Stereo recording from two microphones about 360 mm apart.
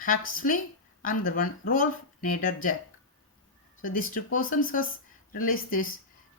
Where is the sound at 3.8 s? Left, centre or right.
Left.